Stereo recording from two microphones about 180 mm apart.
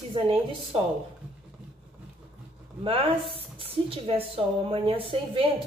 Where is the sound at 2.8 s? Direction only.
30° right (ahead or behind).